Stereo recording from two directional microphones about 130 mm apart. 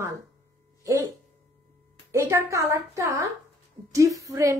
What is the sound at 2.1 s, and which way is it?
A woman's voice, 20° right (ahead or behind).